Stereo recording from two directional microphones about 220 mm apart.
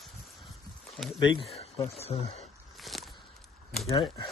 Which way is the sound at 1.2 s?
25° left (ahead or behind).